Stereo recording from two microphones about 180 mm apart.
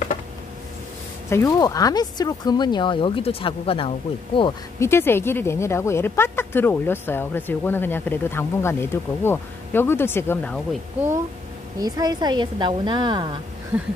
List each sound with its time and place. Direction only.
1.3 s speech: 20° left (ahead or behind)
4.7 s a woman's voice: 15° left (ahead or behind)
11.8 s a woman's voice: 20° right (ahead or behind)
13.7 s a sound: 10° right (ahead or behind)